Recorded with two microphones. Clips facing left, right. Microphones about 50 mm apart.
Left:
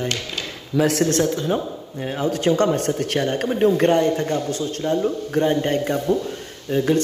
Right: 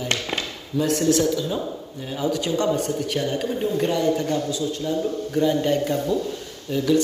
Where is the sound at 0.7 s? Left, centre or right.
Left.